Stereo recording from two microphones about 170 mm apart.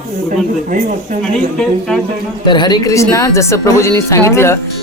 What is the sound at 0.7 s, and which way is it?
Speech, 55° right (ahead or behind).